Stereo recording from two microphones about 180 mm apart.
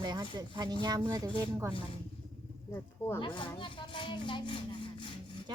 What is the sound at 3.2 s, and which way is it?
Speech, 30° left (ahead or behind).